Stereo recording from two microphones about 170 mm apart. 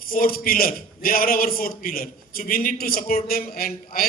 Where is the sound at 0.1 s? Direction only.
55° left (ahead or behind).